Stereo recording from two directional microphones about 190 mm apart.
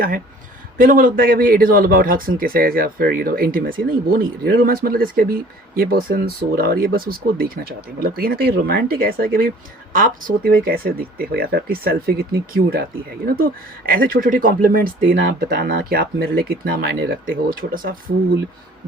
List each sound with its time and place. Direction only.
0.8 s speech: 45° right (ahead or behind)